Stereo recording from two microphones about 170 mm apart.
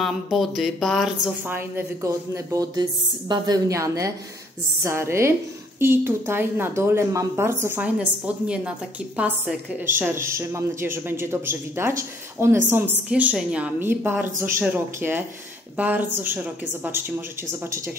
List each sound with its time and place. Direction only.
0.0 s speech: centre (ahead or behind)